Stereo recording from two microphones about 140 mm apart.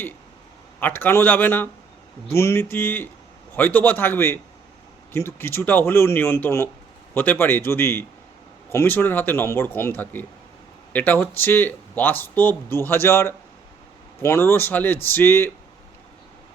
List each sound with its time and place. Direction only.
0.8 s speech: 15° left (ahead or behind)